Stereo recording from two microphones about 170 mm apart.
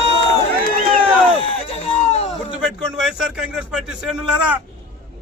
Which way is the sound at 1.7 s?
40° left (ahead or behind).